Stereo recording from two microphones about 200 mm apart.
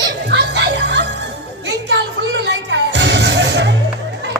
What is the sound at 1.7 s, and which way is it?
Music, 60° right (ahead or behind).